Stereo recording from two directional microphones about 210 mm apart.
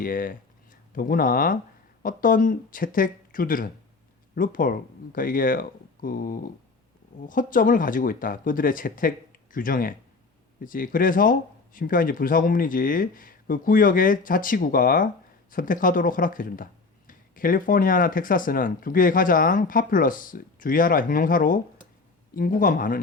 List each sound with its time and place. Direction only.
0.0 s speech: 40° left (ahead or behind)